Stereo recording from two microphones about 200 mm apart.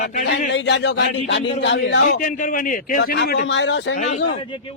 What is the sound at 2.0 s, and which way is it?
A man's voice, 45° left (ahead or behind).